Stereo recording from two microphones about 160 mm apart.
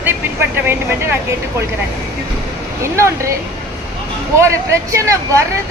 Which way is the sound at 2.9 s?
15° right (ahead or behind).